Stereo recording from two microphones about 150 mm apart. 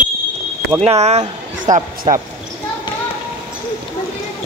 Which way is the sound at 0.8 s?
45° right (ahead or behind).